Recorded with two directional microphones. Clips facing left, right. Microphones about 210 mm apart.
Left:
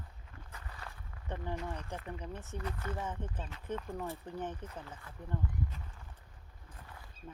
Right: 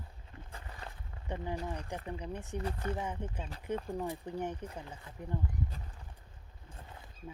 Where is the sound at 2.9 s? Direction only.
15° right (ahead or behind).